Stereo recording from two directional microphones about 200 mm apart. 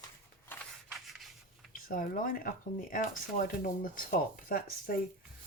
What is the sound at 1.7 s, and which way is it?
Speech, 45° left (ahead or behind).